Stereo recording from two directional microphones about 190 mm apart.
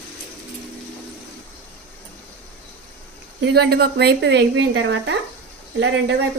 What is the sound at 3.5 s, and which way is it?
A woman's voice, 60° right (ahead or behind).